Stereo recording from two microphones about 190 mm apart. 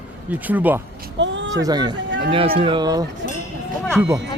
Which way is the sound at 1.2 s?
75° right (ahead or behind).